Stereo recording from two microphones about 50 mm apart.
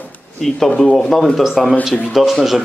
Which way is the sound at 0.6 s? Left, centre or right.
Left.